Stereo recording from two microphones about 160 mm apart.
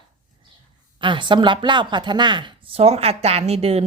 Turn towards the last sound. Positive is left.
turn(degrees=-40)  # may be behind; listen again after turning